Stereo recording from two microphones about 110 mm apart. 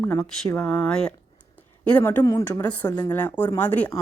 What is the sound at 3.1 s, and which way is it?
Speech, 15° left (ahead or behind).